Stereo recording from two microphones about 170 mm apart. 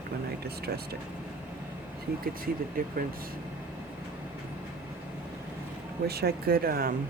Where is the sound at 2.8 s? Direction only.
55° right (ahead or behind).